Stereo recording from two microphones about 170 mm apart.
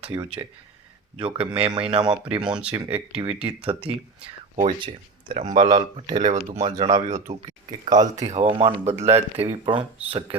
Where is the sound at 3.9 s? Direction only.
5° right (ahead or behind).